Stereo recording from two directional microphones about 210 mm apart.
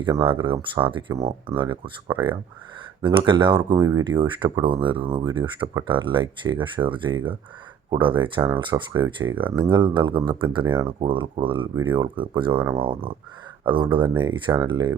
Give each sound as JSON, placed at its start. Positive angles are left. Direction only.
{"t": 0.0, "sound": "speech", "side_deg": -25}
{"t": 3.0, "sound": "speech", "side_deg": -25}
{"t": 9.2, "sound": "speech", "side_deg": -10}
{"t": 9.6, "sound": "speech", "side_deg": -20}